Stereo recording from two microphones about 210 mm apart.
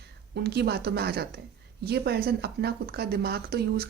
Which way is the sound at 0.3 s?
50° right (ahead or behind).